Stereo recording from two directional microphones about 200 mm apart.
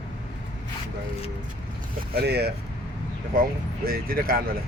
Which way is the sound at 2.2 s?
55° right (ahead or behind).